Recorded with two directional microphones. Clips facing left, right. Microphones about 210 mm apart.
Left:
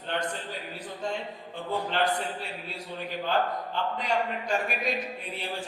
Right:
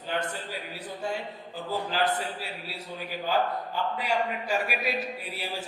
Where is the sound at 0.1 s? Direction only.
5° right (ahead or behind).